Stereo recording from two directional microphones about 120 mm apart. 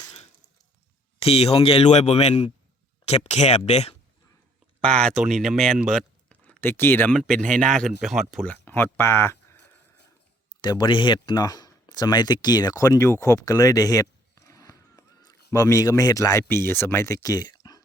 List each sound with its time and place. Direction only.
1.2 s speech: 55° left (ahead or behind)
4.8 s speech: 5° left (ahead or behind)
8.4 s speech: 15° left (ahead or behind)
10.6 s speech: 40° left (ahead or behind); by 17.2 s 20° left (ahead or behind)
17.2 s a sound: 30° left (ahead or behind)